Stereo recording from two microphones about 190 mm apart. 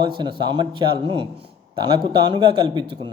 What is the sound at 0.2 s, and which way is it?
A man's voice, 25° right (ahead or behind).